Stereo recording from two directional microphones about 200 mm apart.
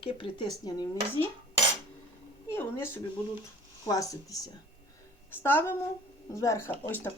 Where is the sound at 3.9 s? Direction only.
15° left (ahead or behind).